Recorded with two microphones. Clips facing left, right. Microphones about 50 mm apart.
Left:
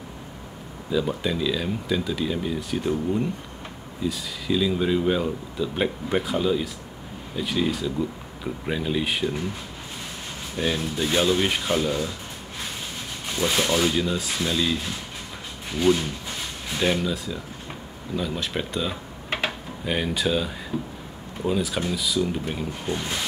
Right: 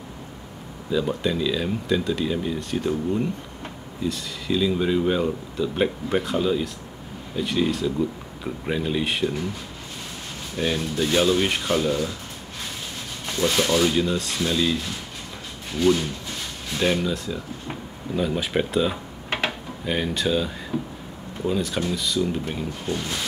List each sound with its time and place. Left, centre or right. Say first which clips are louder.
0.8 s speech: right 1 dB; centre
10.5 s speech: right 1 dB; centre
13.4 s speech: right 2 dB; centre
15.8 s speech: right 1 dB; centre
16.8 s speech: right 1 dB; centre
19.8 s speech: even; centre
22.8 s speech: even; centre